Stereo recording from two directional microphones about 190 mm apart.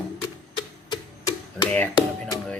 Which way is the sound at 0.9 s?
25° left (ahead or behind).